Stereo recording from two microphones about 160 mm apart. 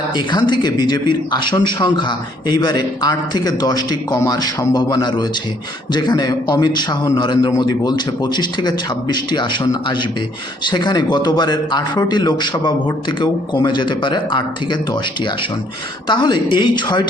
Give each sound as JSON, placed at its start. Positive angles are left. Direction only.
{"t": 0.1, "sound": "speech", "side_deg": 25}